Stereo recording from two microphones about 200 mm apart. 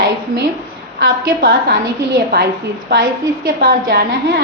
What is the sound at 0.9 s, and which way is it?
Speech, 55° right (ahead or behind).